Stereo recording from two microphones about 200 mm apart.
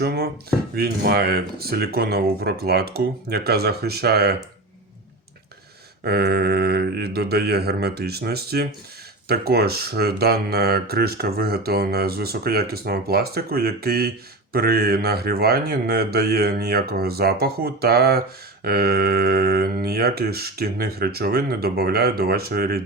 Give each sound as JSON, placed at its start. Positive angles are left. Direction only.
{"t": 0.0, "sound": "speech", "side_deg": -55}
{"t": 6.1, "sound": "speech", "side_deg": -55}